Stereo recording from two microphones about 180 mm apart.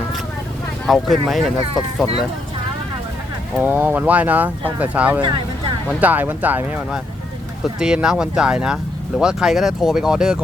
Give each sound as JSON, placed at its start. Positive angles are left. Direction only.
{"t": 0.9, "sound": "speech", "side_deg": 0}
{"t": 3.6, "sound": "speech", "side_deg": -10}
{"t": 5.2, "sound": "speech", "side_deg": -25}
{"t": 6.0, "sound": "speech", "side_deg": -10}